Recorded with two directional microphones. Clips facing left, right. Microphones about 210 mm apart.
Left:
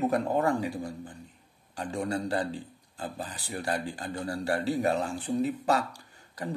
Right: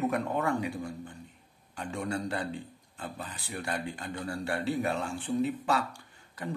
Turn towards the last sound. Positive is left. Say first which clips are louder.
# left 2 dB
turn(degrees=35)  # may be behind; listen again after turning